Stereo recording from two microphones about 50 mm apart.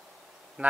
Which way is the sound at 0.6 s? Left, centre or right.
Centre.